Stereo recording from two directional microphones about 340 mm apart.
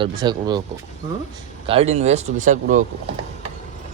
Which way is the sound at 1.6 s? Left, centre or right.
Centre.